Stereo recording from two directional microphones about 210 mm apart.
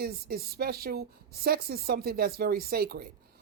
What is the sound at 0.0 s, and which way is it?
Speech, 45° right (ahead or behind).